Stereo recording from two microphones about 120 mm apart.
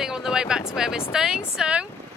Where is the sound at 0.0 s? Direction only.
5° right (ahead or behind).